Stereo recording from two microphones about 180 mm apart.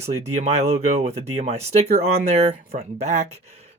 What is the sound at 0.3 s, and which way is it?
Speech, 40° right (ahead or behind).